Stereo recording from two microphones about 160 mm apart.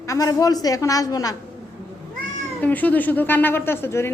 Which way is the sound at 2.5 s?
10° left (ahead or behind).